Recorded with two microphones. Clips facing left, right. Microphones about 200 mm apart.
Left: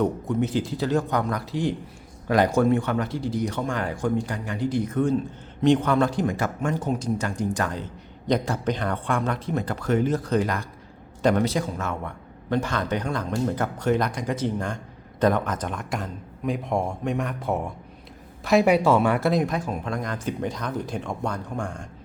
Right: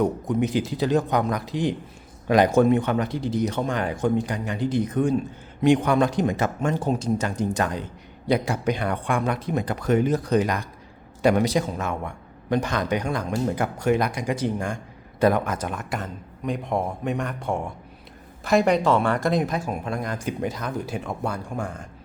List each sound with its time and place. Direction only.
0.0 s a man's voice: 15° right (ahead or behind)